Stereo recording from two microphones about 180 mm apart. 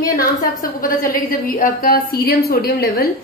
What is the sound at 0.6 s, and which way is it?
A woman's voice, 50° left (ahead or behind).